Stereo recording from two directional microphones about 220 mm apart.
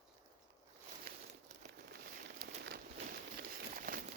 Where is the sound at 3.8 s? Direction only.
40° right (ahead or behind).